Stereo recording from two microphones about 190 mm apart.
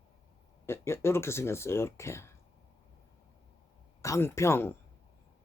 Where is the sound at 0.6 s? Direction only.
15° left (ahead or behind).